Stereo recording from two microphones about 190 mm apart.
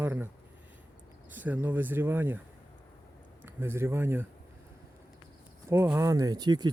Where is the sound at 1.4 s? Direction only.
10° right (ahead or behind).